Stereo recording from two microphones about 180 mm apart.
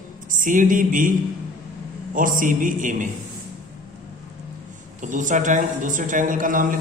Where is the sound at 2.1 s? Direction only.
50° right (ahead or behind).